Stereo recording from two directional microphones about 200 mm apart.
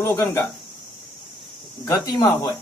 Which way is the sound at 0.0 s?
15° left (ahead or behind).